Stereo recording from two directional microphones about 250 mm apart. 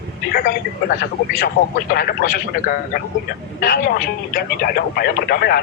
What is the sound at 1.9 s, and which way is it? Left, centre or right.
Speech, left.